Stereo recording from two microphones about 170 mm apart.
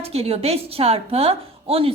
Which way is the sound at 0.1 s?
35° right (ahead or behind).